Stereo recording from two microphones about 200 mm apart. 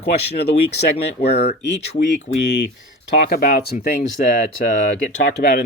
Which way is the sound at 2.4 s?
60° left (ahead or behind).